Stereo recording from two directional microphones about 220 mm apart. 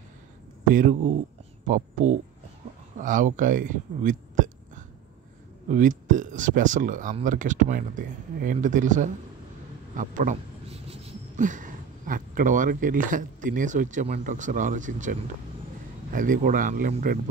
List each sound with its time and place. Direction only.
0.7 s speech: 40° right (ahead or behind)
3.0 s speech: 35° right (ahead or behind)